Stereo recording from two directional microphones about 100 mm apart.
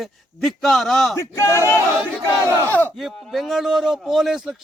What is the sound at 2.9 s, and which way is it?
A man's voice, centre (ahead or behind).